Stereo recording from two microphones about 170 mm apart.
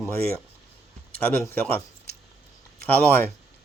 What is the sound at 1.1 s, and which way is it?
Speech, 10° left (ahead or behind).